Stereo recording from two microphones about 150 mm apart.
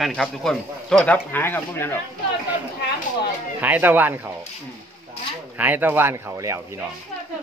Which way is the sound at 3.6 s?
10° right (ahead or behind).